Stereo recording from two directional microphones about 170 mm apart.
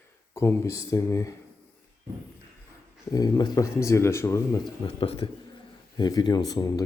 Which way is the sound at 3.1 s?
25° left (ahead or behind).